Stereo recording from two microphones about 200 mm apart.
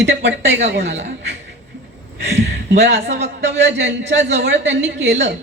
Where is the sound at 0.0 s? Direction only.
65° right (ahead or behind).